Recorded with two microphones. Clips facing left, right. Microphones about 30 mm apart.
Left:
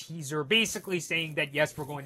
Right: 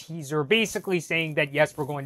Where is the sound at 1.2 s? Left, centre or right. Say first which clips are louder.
Right 5 dB; centre.